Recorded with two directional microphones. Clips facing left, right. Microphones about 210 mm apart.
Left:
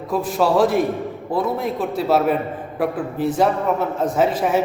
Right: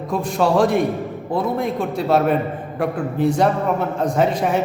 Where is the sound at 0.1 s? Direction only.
5° left (ahead or behind).